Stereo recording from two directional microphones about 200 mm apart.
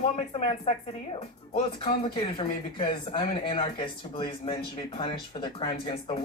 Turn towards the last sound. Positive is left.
turn(degrees=25)  # may be behind; listen again after turning